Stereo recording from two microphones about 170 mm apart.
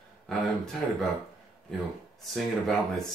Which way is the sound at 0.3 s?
5° left (ahead or behind).